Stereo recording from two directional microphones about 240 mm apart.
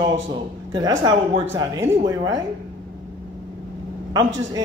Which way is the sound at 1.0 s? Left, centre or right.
Centre.